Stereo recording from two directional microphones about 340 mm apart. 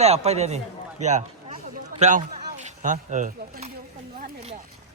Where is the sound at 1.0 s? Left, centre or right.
Right.